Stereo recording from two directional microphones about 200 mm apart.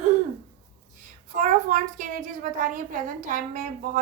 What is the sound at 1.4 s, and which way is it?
A woman's voice, 40° right (ahead or behind).